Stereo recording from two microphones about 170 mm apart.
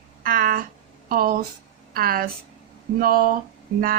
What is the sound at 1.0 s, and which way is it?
A woman's voice, 60° right (ahead or behind).